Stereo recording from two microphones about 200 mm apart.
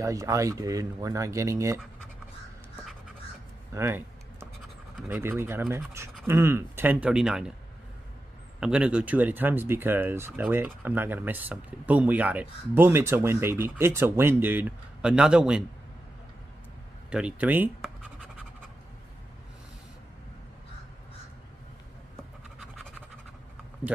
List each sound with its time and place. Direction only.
0.0 s speech: 15° right (ahead or behind)
3.7 s typing: 10° right (ahead or behind)
5.0 s speech: 10° right (ahead or behind)
8.5 s speech: 5° right (ahead or behind)
17.1 s speech: 5° right (ahead or behind)